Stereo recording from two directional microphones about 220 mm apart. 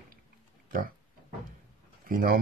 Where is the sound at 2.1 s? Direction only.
40° right (ahead or behind).